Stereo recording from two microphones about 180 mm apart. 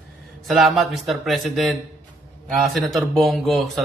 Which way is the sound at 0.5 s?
Centre (ahead or behind).